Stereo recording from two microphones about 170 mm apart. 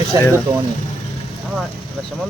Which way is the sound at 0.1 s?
20° right (ahead or behind).